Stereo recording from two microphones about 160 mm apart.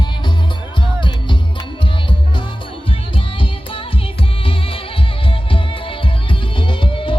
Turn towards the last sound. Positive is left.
turn(degrees=30)  # may be behind; listen again after turning